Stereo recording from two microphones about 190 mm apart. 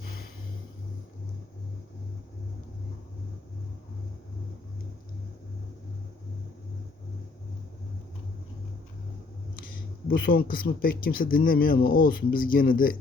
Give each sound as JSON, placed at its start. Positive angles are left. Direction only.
{"t": 10.2, "sound": "a man's voice", "side_deg": 50}